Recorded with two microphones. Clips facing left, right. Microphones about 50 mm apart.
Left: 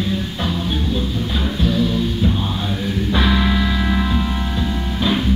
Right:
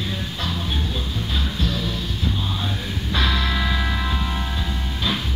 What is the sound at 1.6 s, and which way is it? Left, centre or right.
Music, centre.